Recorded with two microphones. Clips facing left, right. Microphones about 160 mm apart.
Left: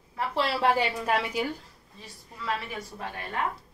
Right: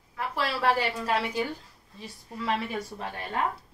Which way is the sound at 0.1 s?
25° left (ahead or behind).